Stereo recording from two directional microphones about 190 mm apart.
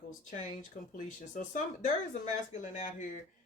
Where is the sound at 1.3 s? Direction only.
40° left (ahead or behind).